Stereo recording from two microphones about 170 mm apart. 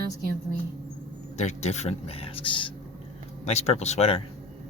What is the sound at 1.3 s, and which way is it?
Speech, 40° left (ahead or behind).